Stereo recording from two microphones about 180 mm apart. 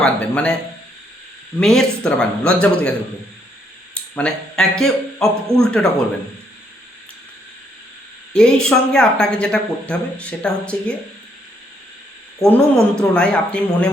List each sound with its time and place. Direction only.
0.0 s speech: 5° left (ahead or behind)
1.5 s speech: centre (ahead or behind)
4.1 s speech: 5° left (ahead or behind)
8.3 s speech: 5° left (ahead or behind)
12.4 s speech: 5° left (ahead or behind)